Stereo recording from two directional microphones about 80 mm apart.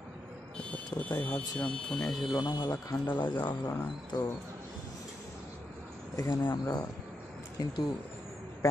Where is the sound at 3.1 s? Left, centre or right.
Left.